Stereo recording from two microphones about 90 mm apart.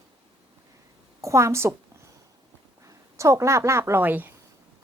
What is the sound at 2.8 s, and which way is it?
Speech, 35° right (ahead or behind).